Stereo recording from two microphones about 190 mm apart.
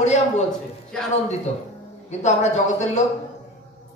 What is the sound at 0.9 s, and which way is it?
Speech, 5° left (ahead or behind).